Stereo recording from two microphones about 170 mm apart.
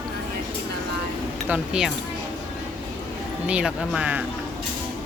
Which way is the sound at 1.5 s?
5° right (ahead or behind).